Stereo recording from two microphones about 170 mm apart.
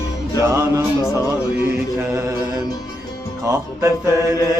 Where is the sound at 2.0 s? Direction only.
15° right (ahead or behind).